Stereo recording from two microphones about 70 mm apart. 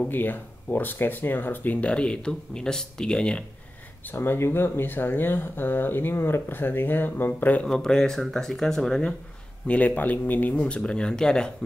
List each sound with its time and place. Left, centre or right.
0.1 s speech: left
4.1 s speech: left
7.6 s speech: centre
9.7 s speech: left